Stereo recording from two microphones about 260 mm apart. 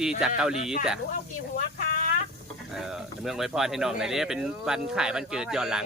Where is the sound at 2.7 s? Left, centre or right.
Centre.